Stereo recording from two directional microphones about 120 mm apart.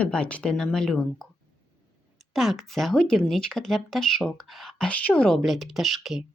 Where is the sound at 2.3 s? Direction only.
Centre (ahead or behind).